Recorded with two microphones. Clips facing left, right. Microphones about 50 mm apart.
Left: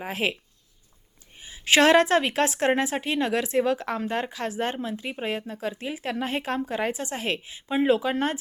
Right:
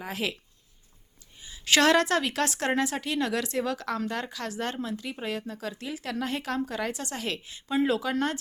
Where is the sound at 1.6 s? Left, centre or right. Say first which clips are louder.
Left 4 dB; left.